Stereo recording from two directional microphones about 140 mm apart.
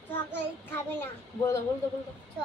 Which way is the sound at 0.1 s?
15° left (ahead or behind).